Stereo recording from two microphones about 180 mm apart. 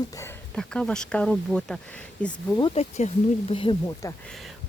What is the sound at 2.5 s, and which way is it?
Speech, 30° left (ahead or behind).